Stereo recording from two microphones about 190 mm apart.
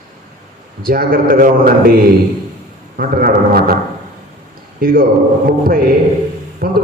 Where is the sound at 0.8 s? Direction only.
50° right (ahead or behind).